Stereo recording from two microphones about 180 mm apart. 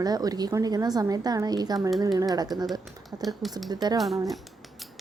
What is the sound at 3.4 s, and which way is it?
Speech, centre (ahead or behind).